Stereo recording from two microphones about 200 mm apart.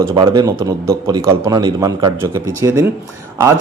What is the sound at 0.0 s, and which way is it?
A man's voice, 20° right (ahead or behind).